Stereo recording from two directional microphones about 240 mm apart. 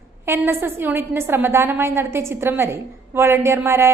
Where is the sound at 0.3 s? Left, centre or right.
Centre.